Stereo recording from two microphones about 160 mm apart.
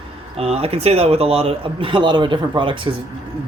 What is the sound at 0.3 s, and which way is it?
Speech, 40° right (ahead or behind).